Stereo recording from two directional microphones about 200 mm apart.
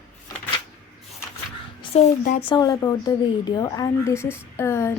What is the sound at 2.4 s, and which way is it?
A woman's voice, 20° left (ahead or behind).